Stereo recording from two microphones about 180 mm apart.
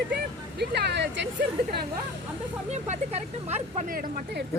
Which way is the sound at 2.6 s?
40° right (ahead or behind).